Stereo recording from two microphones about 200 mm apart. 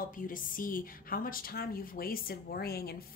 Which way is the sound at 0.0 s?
45° left (ahead or behind).